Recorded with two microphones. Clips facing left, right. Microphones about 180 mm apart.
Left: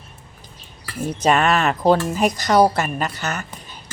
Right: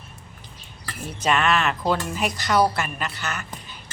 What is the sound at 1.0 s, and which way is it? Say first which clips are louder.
Speech: left 5 dB; 40° left (ahead or behind).